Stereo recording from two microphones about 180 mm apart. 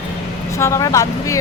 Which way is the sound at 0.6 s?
15° left (ahead or behind).